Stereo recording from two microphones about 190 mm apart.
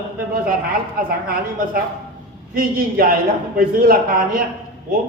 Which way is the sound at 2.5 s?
50° right (ahead or behind).